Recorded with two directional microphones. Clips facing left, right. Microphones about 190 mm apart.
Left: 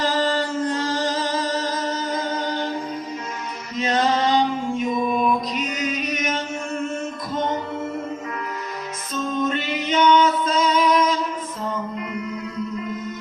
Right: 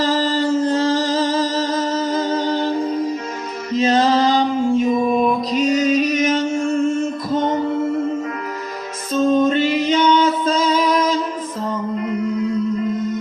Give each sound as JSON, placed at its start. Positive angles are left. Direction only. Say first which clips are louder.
{"t": 0.3, "sound": "music", "louder": "right 5 dB", "side_deg": -25}
{"t": 3.8, "sound": "music", "louder": "right 5 dB", "side_deg": -30}
{"t": 9.1, "sound": "music", "louder": "right 9 dB", "side_deg": -30}